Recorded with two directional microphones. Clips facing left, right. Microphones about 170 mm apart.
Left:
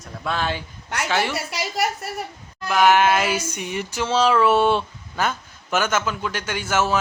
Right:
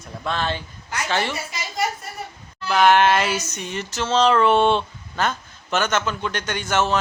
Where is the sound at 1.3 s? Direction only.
70° left (ahead or behind).